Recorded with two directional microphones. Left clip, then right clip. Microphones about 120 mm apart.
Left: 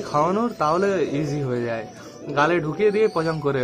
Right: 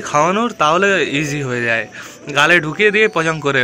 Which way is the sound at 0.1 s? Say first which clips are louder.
Right 6 dB; 20° right (ahead or behind).